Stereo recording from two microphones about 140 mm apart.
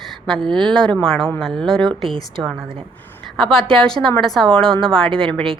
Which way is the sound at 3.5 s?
5° left (ahead or behind).